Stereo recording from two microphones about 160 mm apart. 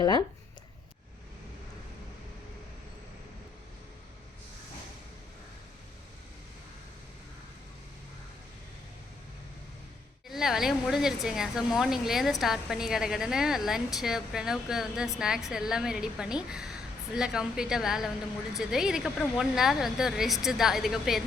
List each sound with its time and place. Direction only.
0.0 s speech: 25° left (ahead or behind)
10.2 s speech: centre (ahead or behind)